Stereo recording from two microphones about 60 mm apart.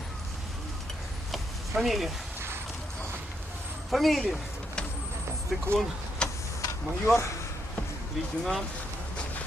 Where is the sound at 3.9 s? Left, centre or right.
Centre.